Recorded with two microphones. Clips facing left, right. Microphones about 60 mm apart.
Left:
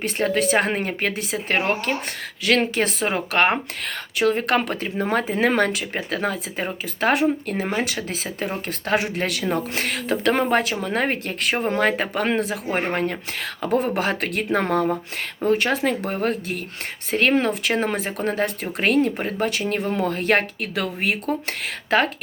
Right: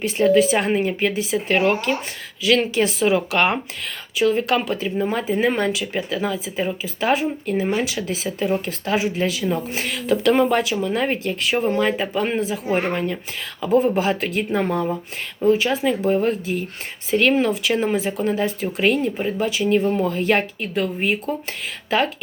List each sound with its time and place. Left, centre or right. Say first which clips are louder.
0.0 s speech: right 6 dB; left
3.8 s speech: right 1 dB; left
5.8 s speech: right 1 dB; left
10.2 s speech: right 2 dB; left
12.7 s speech: right 1 dB; left
20.7 s speech: right 3 dB; left
21.8 s speech: left 1 dB; left